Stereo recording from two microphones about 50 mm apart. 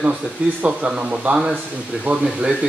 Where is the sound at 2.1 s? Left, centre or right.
Right.